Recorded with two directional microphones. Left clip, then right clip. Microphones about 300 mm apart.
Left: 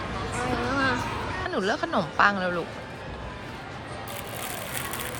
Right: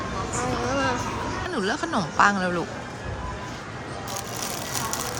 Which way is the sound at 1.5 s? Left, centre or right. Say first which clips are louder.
Left 1 dB; centre.